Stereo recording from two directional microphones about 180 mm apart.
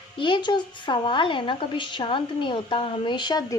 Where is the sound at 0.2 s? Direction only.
25° left (ahead or behind).